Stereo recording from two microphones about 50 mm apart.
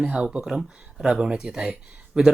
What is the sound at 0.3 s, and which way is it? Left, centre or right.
Speech, centre.